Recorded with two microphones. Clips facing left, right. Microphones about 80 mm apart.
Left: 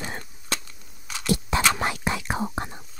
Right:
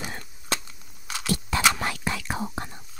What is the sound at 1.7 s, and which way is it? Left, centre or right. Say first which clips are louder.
Whispering: left 3 dB; left.